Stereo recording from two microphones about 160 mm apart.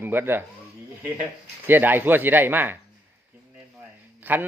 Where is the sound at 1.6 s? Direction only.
10° right (ahead or behind).